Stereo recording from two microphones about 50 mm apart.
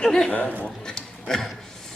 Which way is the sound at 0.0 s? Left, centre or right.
Centre.